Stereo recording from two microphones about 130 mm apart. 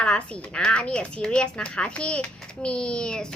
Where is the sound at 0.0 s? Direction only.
10° left (ahead or behind).